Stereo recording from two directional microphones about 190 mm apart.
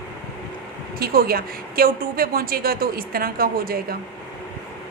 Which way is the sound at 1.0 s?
50° right (ahead or behind).